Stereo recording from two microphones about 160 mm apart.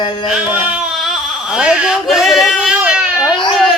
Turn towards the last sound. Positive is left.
turn(degrees=0)  # may be behind; listen again after turning